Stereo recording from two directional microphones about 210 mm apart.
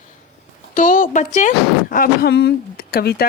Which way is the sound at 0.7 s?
40° left (ahead or behind).